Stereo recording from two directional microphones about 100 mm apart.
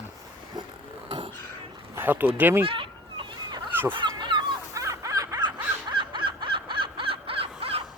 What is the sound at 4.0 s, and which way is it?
Dog, 50° right (ahead or behind).